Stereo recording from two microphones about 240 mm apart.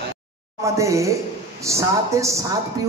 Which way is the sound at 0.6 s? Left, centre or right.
Centre.